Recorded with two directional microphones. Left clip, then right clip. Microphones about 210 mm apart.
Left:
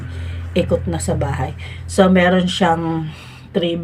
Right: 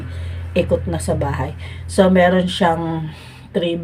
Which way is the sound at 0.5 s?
Centre (ahead or behind).